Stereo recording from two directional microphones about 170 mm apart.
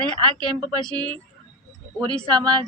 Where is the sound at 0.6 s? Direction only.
5° left (ahead or behind).